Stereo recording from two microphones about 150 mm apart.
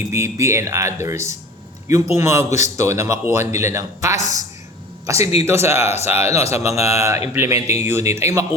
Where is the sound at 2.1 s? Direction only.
20° right (ahead or behind).